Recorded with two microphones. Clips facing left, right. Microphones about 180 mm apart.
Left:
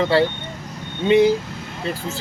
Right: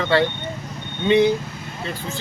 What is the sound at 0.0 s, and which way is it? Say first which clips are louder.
Speech: left 2 dB; 30° left (ahead or behind).